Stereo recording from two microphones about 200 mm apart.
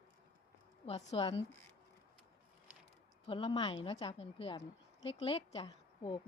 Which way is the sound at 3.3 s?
25° left (ahead or behind).